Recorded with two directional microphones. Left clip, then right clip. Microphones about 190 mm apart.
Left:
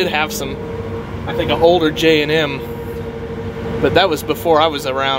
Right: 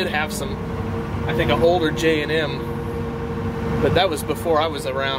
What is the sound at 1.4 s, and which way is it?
Speech, 35° left (ahead or behind).